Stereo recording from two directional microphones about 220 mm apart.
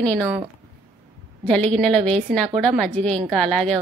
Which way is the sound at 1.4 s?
5° left (ahead or behind).